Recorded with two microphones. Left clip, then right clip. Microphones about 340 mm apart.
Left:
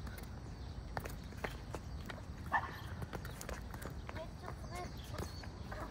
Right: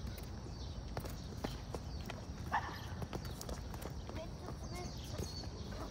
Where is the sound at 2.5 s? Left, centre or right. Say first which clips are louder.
Left 2 dB; centre.